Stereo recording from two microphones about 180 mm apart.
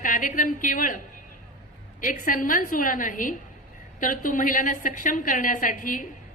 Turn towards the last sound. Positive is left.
turn(degrees=50)  # may be behind; listen again after turning